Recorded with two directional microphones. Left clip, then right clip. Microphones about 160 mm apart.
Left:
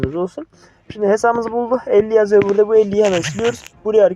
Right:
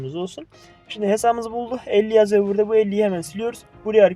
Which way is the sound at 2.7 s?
10° left (ahead or behind).